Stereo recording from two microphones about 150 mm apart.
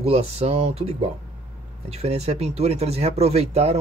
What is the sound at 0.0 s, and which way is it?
Speech, 45° right (ahead or behind).